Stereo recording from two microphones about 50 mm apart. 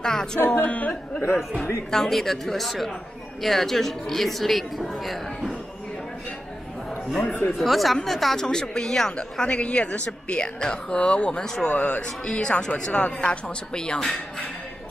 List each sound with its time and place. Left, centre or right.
0.0 s music: centre
0.6 s speech: left
1.3 s speech: centre
1.9 s a woman's voice: centre
7.2 s speech: left
7.5 s a woman's voice: centre
8.5 s speech: centre
9.1 s speech: left
11.7 s speech: left
12.3 s speech: centre